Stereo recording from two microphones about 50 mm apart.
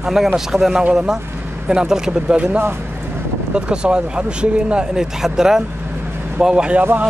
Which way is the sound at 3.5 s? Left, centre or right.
Centre.